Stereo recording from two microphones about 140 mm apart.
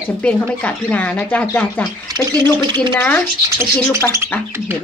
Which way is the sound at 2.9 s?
15° left (ahead or behind).